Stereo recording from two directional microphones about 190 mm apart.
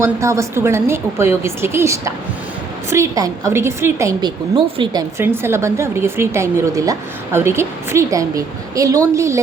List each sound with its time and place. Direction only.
0.0 s a woman's voice: 15° right (ahead or behind)
4.5 s speech: 25° right (ahead or behind)
5.1 s a woman's voice: 10° right (ahead or behind)